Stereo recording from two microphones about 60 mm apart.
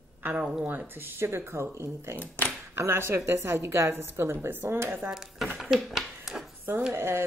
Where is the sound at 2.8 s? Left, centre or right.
Right.